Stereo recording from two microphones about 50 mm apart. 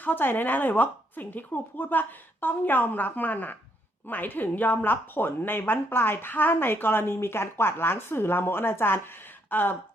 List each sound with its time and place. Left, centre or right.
0.0 s speech: left